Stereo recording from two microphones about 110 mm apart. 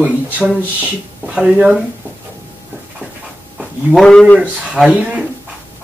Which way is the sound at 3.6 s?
5° right (ahead or behind).